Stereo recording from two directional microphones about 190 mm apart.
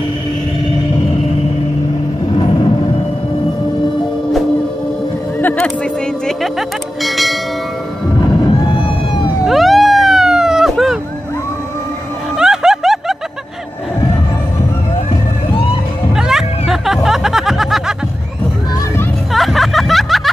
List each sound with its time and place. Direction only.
2.3 s vehicle: 30° left (ahead or behind)
5.4 s a sound: 10° left (ahead or behind)
7.0 s church bell: centre (ahead or behind)
9.4 s cat: centre (ahead or behind)
12.4 s a sound: 5° right (ahead or behind)
16.2 s music: centre (ahead or behind)
19.3 s snicker: centre (ahead or behind)